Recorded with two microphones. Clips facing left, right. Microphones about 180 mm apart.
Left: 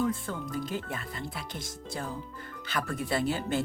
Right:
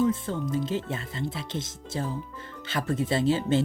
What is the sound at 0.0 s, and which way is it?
Speech, 20° right (ahead or behind).